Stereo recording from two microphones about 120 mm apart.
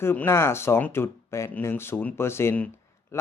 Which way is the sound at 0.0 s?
20° left (ahead or behind).